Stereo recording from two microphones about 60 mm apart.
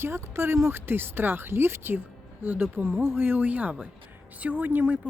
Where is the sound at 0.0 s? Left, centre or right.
Right.